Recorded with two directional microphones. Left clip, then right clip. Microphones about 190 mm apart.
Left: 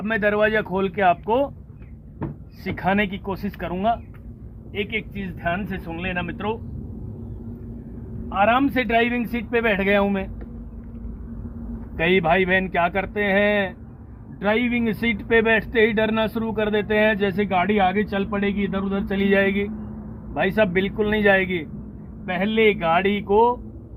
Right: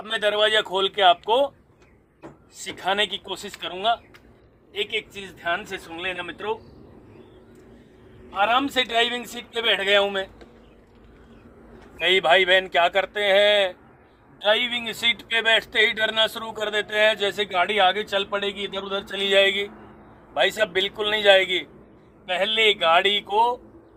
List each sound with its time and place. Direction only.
0.0 s a man's voice: centre (ahead or behind)
2.6 s a man's voice: centre (ahead or behind)
8.3 s a man's voice: 5° left (ahead or behind)
11.9 s speech: 10° right (ahead or behind)